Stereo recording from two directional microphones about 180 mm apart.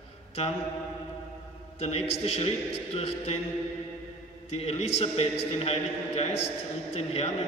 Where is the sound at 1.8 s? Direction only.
35° left (ahead or behind).